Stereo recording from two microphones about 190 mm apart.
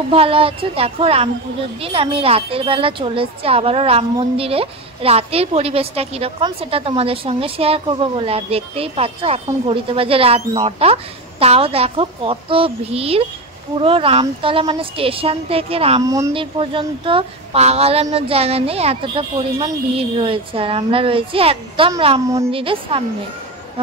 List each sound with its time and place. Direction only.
0.1 s a woman's voice: 30° right (ahead or behind)
16.0 s a woman's voice: 20° right (ahead or behind)